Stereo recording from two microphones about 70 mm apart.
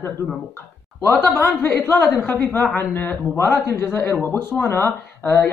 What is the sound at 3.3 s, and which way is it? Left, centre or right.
A woman's voice, left.